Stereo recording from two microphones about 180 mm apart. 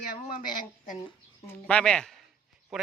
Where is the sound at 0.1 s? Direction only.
55° left (ahead or behind).